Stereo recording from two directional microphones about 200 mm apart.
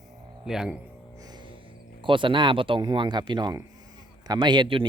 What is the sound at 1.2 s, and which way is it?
Music, 20° right (ahead or behind).